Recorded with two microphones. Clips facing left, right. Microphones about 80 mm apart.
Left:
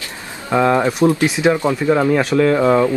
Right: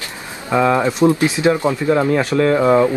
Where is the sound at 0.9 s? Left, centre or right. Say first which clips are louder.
Right 1 dB; right.